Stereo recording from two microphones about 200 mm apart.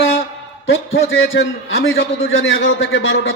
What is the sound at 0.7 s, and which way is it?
A man's voice, 70° left (ahead or behind).